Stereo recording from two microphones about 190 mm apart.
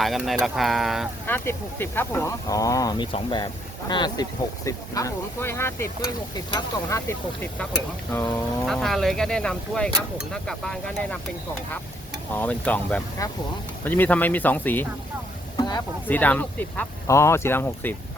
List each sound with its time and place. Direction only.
0.0 s speech: centre (ahead or behind)
1.3 s speech: 10° left (ahead or behind)
8.1 s speech: 5° left (ahead or behind)
12.3 s speech: 10° left (ahead or behind)
16.0 s speech: 10° left (ahead or behind)